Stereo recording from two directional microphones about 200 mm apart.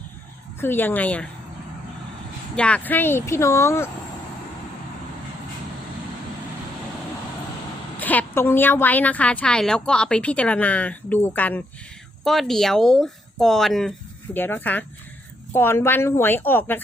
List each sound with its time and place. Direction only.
0.6 s a woman's voice: 10° left (ahead or behind)
2.6 s a woman's voice: 5° left (ahead or behind)
7.9 s a woman's voice: 10° left (ahead or behind)